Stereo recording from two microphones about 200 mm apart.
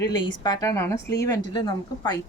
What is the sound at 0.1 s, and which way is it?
A woman's voice, 20° left (ahead or behind).